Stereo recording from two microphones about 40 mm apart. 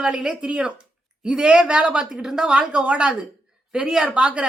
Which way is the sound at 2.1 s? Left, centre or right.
Centre.